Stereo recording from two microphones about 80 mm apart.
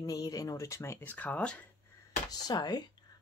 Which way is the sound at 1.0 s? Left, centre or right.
Centre.